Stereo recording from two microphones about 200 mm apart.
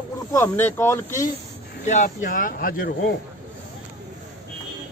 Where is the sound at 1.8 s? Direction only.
40° left (ahead or behind).